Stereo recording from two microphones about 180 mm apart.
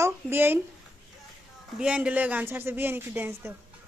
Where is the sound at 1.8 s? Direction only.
5° right (ahead or behind).